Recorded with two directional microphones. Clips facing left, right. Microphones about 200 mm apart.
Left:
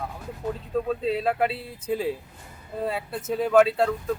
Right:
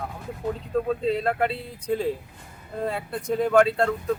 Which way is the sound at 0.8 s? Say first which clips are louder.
Even; 5° left (ahead or behind).